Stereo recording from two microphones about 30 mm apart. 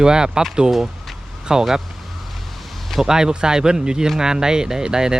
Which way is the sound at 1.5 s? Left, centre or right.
Right.